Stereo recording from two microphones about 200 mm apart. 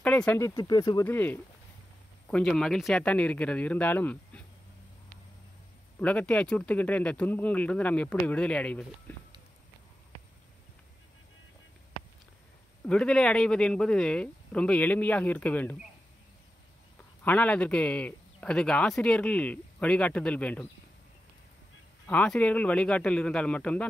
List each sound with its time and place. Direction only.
0.0 s speech: 5° left (ahead or behind)
0.6 s speech: 20° left (ahead or behind)
5.9 s speech: 5° left (ahead or behind)
12.8 s speech: 5° left (ahead or behind)
17.2 s speech: 10° left (ahead or behind)
22.0 s speech: 5° left (ahead or behind)